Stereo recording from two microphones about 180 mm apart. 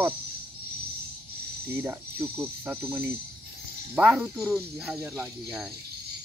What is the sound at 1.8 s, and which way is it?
Music, 10° right (ahead or behind).